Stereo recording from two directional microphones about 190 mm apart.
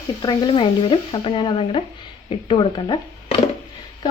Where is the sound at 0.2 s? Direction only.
25° left (ahead or behind).